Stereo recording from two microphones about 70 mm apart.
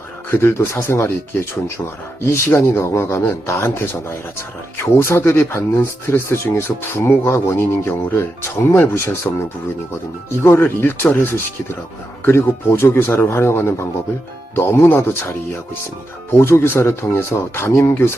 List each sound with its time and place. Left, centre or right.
0.3 s speech: left
16.4 s speech: left